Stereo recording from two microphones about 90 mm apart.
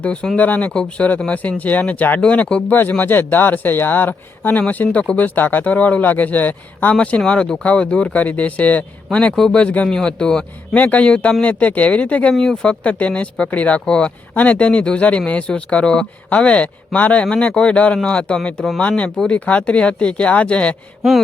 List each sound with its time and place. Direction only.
0.0 s speech: 10° left (ahead or behind)